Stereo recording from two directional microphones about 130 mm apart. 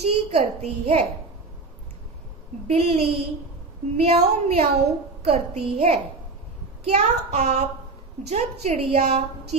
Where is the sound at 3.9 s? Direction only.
55° right (ahead or behind).